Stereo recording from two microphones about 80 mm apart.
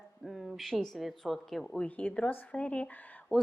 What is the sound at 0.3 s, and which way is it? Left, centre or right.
A woman's voice, centre.